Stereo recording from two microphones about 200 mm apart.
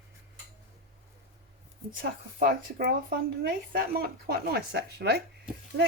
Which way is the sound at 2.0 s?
45° right (ahead or behind).